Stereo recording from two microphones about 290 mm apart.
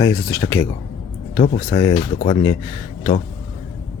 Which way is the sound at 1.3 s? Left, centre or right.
Left.